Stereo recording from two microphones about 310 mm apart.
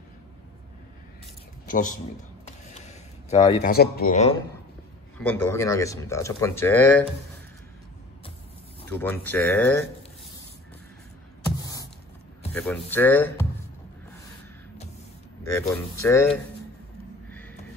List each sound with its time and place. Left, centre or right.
1.7 s speech: left
2.4 s a sound: left
3.6 s speech: left
5.2 s speech: centre
8.9 s speech: centre
11.4 s music: centre
12.5 s speech: centre
15.4 s speech: centre
17.3 s a sound: centre